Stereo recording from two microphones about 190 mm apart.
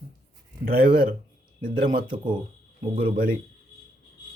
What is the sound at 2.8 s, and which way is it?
Speech, 25° right (ahead or behind).